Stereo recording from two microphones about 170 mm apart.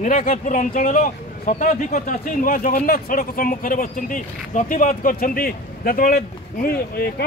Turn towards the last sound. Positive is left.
turn(degrees=65)  # may be behind; listen again after turning